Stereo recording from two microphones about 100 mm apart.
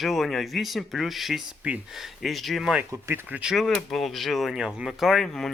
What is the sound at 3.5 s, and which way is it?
Speech, centre (ahead or behind).